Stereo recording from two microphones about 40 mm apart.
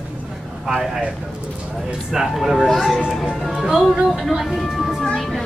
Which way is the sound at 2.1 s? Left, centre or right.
Centre.